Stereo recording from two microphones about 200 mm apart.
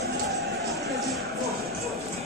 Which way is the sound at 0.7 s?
Centre (ahead or behind).